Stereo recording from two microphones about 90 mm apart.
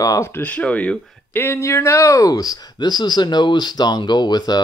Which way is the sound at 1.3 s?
30° left (ahead or behind).